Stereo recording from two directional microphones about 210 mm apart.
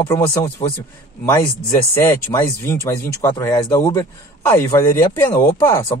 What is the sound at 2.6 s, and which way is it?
A man's voice, 10° left (ahead or behind).